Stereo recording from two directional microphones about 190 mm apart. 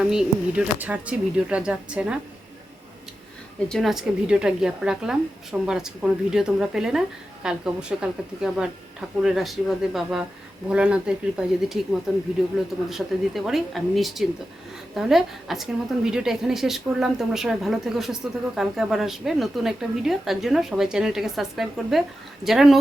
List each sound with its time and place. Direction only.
0.0 s a woman's voice: 5° right (ahead or behind)
3.7 s a woman's voice: centre (ahead or behind)
12.9 s a woman's voice: centre (ahead or behind)